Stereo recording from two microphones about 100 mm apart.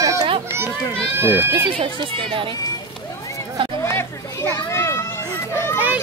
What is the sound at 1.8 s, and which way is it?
Speech, 60° right (ahead or behind).